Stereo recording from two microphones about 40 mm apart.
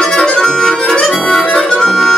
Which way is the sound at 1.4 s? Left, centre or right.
Left.